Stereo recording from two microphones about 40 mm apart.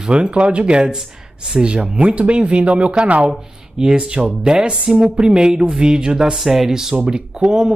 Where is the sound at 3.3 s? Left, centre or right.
Centre.